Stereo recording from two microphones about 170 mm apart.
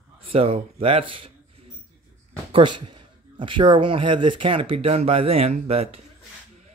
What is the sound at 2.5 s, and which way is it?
Speech, 30° right (ahead or behind).